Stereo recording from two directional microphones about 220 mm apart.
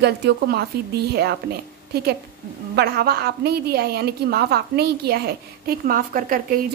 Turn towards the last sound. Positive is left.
turn(degrees=-40)  # may be behind; listen again after turning